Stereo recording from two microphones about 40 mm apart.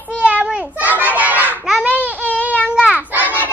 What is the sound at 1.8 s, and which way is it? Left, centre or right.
Baby cry, right.